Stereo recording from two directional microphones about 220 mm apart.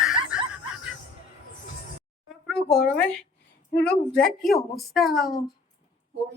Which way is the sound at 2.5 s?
Centre (ahead or behind).